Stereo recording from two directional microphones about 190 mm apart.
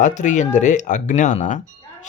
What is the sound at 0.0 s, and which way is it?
A man's voice, 40° left (ahead or behind).